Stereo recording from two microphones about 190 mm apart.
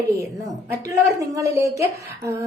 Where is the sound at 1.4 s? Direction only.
15° right (ahead or behind).